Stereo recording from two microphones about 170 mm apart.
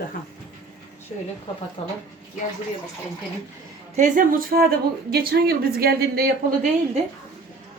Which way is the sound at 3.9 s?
50° right (ahead or behind).